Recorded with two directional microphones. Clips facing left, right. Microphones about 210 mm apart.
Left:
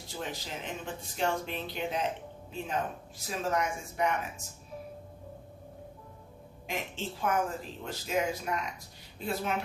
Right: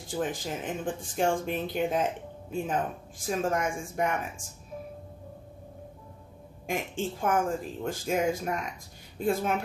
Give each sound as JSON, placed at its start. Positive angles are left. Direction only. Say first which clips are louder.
{"t": 0.0, "sound": "speech", "louder": "right 7 dB", "side_deg": -50}
{"t": 6.7, "sound": "speech", "louder": "right 5 dB", "side_deg": -50}